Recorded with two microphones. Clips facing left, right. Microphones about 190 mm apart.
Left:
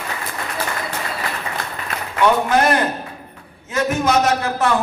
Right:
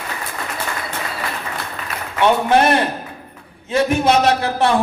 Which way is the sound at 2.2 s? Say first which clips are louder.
Right 2 dB; 25° right (ahead or behind).